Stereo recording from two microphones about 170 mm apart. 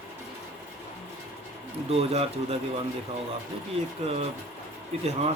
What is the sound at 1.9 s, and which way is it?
Speech, 35° right (ahead or behind).